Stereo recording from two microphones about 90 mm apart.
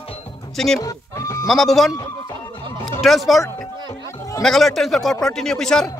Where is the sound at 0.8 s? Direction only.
35° left (ahead or behind).